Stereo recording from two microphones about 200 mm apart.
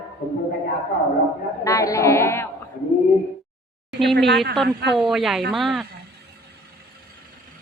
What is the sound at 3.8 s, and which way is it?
Speech, centre (ahead or behind).